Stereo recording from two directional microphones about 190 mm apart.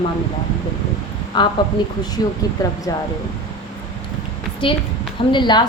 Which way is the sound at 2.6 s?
20° left (ahead or behind).